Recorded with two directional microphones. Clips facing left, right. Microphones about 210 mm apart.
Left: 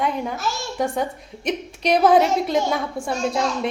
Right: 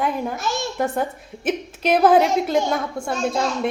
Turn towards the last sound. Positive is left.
turn(degrees=0)  # may be behind; listen again after turning